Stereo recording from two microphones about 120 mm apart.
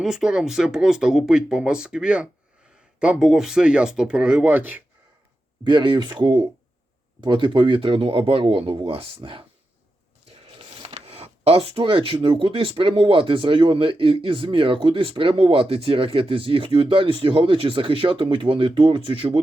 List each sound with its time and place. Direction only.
0.0 s speech: 5° right (ahead or behind)
5.6 s speech: 40° right (ahead or behind)
10.8 s speech: 60° right (ahead or behind)